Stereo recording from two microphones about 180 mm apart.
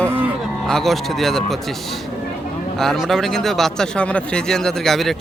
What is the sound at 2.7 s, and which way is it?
Speech, centre (ahead or behind).